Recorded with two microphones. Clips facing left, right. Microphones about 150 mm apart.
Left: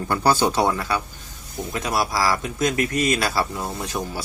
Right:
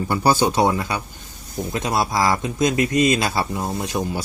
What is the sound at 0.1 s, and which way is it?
Speech, 15° right (ahead or behind).